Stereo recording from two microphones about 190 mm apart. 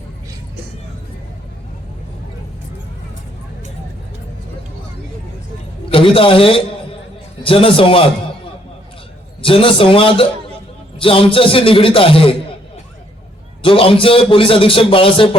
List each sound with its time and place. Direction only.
5.9 s a man's voice: 30° left (ahead or behind)
9.4 s a man's voice: 30° left (ahead or behind)
13.6 s a man's voice: 30° left (ahead or behind)